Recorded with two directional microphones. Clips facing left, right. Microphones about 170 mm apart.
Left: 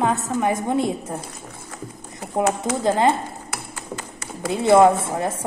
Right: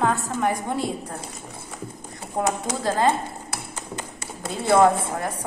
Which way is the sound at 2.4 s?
15° left (ahead or behind).